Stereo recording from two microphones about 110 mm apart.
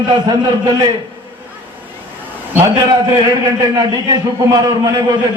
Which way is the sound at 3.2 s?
35° right (ahead or behind).